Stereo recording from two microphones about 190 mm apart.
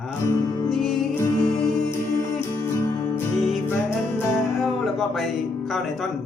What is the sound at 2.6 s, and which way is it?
Music, 15° left (ahead or behind).